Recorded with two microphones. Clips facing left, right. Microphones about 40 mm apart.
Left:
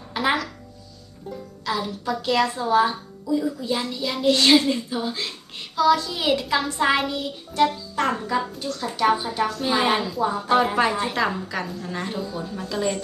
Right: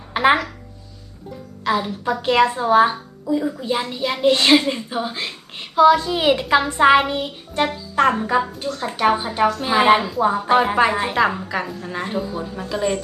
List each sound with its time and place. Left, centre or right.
0.1 s speech: right
1.6 s a woman's voice: right
9.6 s a woman's voice: right